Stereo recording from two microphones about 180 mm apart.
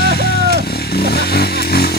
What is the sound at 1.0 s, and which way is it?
Motorcycle, 60° left (ahead or behind).